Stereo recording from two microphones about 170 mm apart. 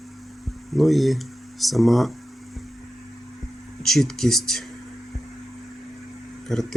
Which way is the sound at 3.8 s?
Centre (ahead or behind).